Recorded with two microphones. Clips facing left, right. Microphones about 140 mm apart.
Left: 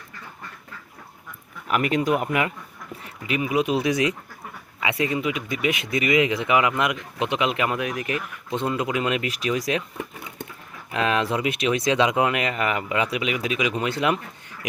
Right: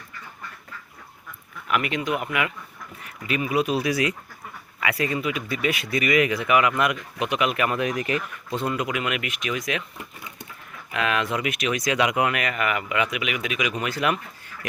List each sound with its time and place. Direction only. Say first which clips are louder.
1.6 s speech: left 3 dB; 40° left (ahead or behind)
3.2 s speech: left 1 dB; 20° left (ahead or behind)
7.8 s speech: right 2 dB; centre (ahead or behind)
8.4 s speech: left 2 dB; 20° left (ahead or behind)
10.9 s speech: left 2 dB; 30° left (ahead or behind)